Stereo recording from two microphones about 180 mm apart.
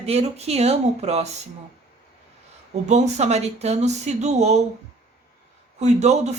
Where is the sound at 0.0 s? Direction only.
35° right (ahead or behind).